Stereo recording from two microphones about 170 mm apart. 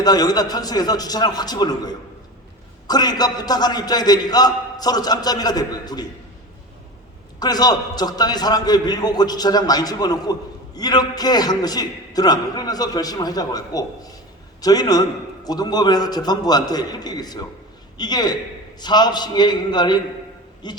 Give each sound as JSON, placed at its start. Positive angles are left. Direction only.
{"t": 0.0, "sound": "a man's voice", "side_deg": 25}
{"t": 7.3, "sound": "a man's voice", "side_deg": 25}